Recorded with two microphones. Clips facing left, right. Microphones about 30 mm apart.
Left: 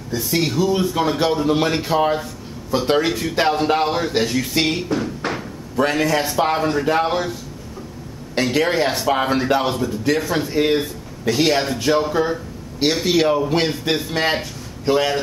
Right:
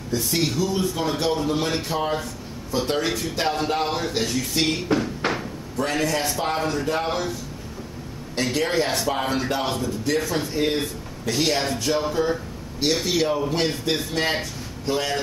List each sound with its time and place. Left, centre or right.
0.1 s a man's voice: centre
5.2 s slam: centre
5.9 s a man's voice: centre
8.4 s a man's voice: centre